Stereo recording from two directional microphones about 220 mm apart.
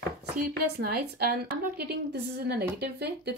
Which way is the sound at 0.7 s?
45° right (ahead or behind).